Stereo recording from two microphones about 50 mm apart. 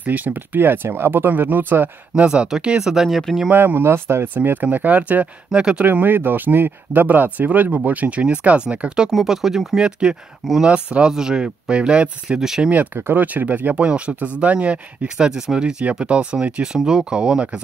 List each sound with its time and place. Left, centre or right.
0.0 s speech: right
2.1 s speech: centre
2.8 s speech: centre
3.4 s speech: right
4.3 s speech: right
5.9 s speech: right; by 9.1 s centre
9.1 s speech: centre
9.8 s speech: centre
12.4 s speech: centre
12.6 s speech: right
13.7 s speech: right
15.1 s speech: centre
16.6 s speech: centre